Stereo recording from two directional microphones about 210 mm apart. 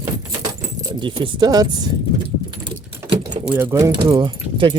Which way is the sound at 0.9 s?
20° right (ahead or behind).